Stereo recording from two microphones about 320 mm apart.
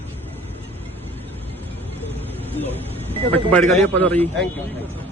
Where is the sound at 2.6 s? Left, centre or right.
Centre.